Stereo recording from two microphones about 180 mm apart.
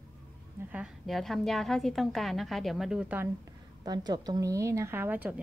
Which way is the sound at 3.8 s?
20° right (ahead or behind).